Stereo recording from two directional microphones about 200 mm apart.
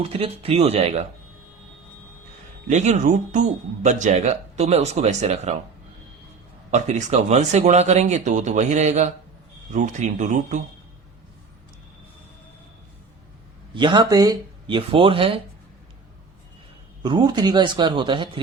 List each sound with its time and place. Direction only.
0.0 s speech: 30° right (ahead or behind)
2.6 s speech: 35° right (ahead or behind)
6.7 s speech: 35° right (ahead or behind)
13.7 s speech: 25° right (ahead or behind)
17.0 s speech: 25° right (ahead or behind)